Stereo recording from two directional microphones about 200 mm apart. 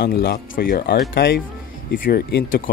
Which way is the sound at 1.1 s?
60° left (ahead or behind).